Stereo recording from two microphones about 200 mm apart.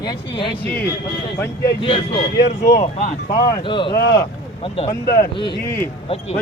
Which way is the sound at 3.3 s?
25° left (ahead or behind).